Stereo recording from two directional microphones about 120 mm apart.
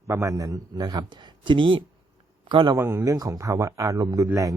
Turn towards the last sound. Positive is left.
turn(degrees=-30)  # may be behind; listen again after turning